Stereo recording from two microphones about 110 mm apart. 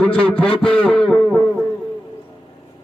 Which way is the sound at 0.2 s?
10° left (ahead or behind).